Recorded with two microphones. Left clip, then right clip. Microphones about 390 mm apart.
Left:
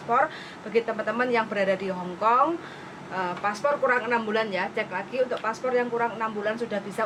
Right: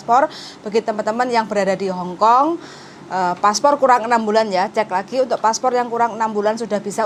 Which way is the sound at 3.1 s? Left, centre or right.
Right.